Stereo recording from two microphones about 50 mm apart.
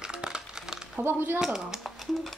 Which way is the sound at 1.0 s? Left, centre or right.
Right.